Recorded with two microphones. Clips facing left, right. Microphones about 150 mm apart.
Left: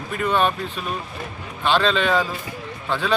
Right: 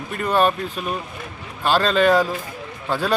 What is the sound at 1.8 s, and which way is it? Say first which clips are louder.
Speech: right 4 dB; 45° right (ahead or behind).